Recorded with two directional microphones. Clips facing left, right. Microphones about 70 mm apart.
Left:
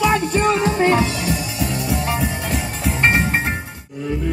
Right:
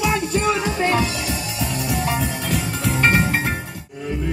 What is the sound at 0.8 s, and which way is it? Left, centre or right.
Music, left.